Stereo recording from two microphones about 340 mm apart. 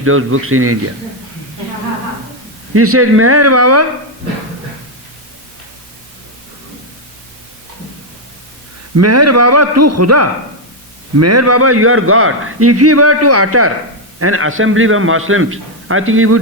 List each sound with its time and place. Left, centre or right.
0.0 s a man's voice: right
2.7 s a man's voice: right
9.0 s a man's voice: right